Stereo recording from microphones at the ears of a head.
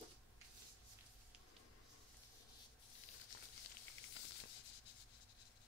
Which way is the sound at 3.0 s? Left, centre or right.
Left.